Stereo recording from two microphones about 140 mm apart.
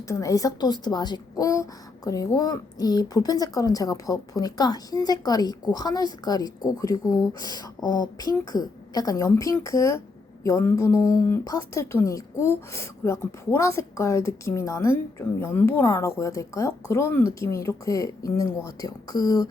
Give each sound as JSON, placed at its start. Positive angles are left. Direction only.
{"t": 0.1, "sound": "speech", "side_deg": 25}